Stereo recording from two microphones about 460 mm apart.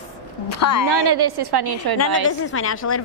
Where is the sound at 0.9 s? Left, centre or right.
Right.